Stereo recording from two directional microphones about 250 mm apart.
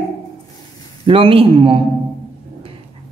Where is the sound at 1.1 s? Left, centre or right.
Right.